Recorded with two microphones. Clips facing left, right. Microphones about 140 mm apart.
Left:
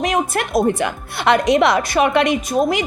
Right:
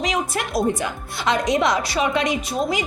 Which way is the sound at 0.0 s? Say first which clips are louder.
Left 5 dB; 55° left (ahead or behind).